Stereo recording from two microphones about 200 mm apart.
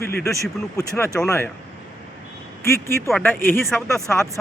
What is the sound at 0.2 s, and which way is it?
Speech, centre (ahead or behind).